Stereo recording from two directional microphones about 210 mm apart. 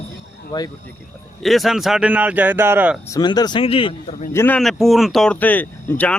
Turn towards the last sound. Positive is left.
turn(degrees=5)  # may be behind; listen again after turning